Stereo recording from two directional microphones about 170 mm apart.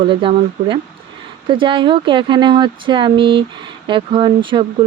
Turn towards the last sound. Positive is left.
turn(degrees=-30)  # may be behind; listen again after turning